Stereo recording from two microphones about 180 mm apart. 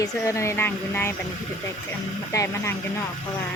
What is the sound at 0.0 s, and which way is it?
Speech, 15° left (ahead or behind).